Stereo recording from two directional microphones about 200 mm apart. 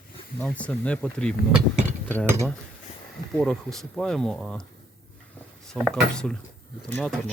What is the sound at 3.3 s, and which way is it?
Speech, centre (ahead or behind).